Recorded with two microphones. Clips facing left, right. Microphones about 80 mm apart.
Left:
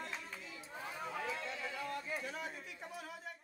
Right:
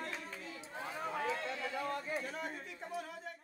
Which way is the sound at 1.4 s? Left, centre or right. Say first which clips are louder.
Right 4 dB; right.